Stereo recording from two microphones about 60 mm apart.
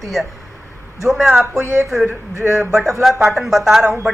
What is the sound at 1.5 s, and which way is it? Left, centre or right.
Speech, right.